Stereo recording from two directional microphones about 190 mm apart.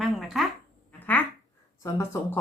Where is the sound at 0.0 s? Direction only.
Centre (ahead or behind).